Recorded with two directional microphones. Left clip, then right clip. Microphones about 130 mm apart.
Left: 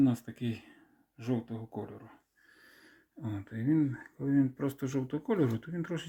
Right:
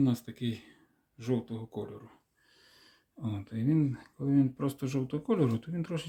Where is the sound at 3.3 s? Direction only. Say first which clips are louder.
Left 1 dB; 30° right (ahead or behind).